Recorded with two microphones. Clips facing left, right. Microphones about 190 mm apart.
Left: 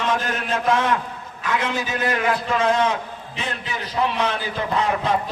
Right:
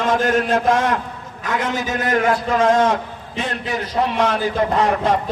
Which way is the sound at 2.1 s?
45° right (ahead or behind).